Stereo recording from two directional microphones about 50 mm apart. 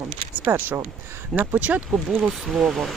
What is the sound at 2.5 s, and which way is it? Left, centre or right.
Speech, centre.